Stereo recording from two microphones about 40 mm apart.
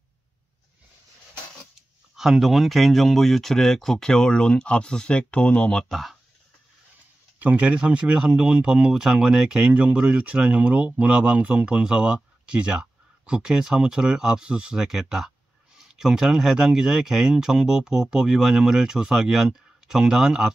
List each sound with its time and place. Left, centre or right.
2.1 s speech: centre
7.3 s speech: right
7.7 s speech: right
14.8 s speech: centre